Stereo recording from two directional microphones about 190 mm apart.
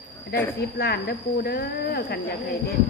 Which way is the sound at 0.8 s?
55° left (ahead or behind).